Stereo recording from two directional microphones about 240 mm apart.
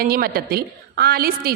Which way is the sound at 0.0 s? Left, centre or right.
Right.